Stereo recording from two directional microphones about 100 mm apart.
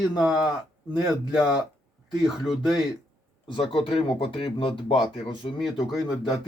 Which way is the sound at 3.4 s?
60° left (ahead or behind).